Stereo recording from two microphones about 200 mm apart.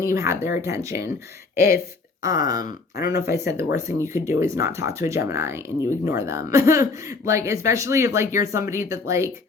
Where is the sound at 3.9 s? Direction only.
15° right (ahead or behind).